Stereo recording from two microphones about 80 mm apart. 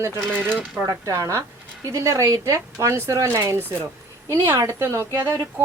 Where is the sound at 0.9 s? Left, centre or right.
Right.